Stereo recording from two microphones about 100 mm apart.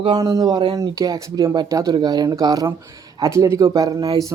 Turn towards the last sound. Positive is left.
turn(degrees=-35)  # may be behind; listen again after turning